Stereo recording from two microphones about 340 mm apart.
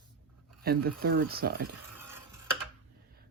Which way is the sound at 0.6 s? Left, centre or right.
Right.